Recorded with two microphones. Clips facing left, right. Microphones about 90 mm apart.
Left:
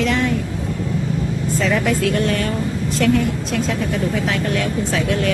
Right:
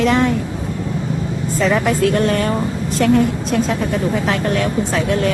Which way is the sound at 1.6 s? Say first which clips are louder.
Right 4 dB; 40° right (ahead or behind).